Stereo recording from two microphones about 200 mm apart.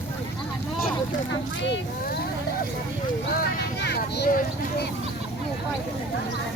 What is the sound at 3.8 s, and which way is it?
Speech, 55° left (ahead or behind).